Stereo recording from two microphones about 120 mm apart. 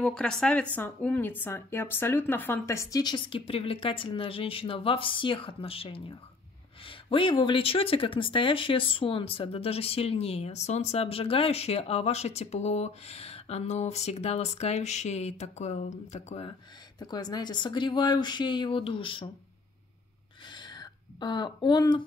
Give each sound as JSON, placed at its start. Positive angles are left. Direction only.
{"t": 0.0, "sound": "speech", "side_deg": 5}
{"t": 17.0, "sound": "speech", "side_deg": 35}
{"t": 20.4, "sound": "a sound", "side_deg": 40}